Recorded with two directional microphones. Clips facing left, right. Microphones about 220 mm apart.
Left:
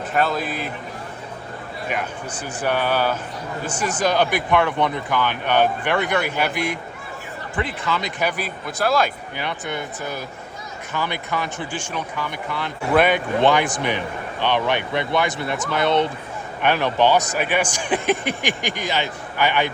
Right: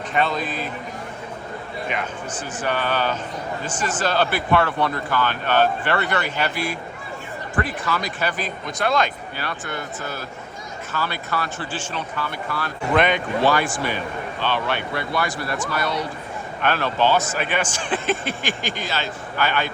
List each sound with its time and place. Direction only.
0.1 s a man's voice: 5° left (ahead or behind)
1.9 s speech: 10° left (ahead or behind)
9.4 s speech: 20° left (ahead or behind)
12.9 s a man's voice: 5° left (ahead or behind)
13.4 s speech: 20° left (ahead or behind)